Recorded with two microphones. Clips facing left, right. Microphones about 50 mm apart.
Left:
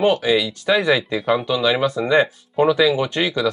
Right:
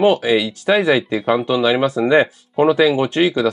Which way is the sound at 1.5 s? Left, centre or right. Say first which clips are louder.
Right 3 dB; right.